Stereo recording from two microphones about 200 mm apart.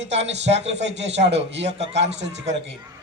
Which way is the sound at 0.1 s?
30° right (ahead or behind).